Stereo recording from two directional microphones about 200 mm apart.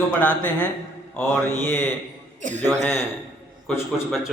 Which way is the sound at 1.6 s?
10° left (ahead or behind).